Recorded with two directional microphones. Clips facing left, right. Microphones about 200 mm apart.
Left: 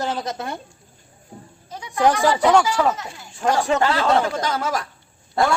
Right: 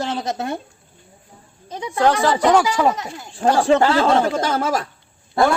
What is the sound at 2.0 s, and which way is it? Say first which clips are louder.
Speech: right 1 dB; 15° left (ahead or behind).